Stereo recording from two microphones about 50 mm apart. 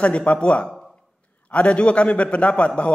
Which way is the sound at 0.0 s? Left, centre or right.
Left.